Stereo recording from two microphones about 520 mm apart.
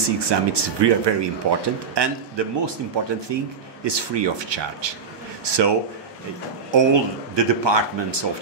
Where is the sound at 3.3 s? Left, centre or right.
Right.